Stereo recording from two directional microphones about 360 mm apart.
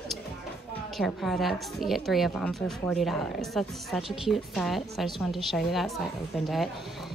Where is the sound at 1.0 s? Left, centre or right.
Centre.